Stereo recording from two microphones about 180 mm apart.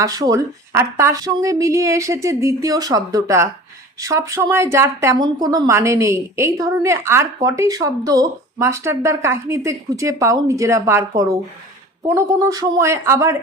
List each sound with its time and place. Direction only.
0.0 s speech: 20° right (ahead or behind)